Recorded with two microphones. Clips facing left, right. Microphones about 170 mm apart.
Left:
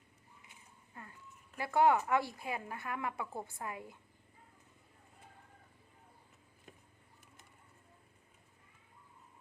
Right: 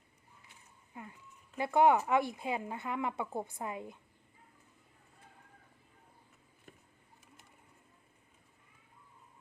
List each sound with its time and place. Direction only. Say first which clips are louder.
0.9 s speech: right 4 dB; 15° right (ahead or behind)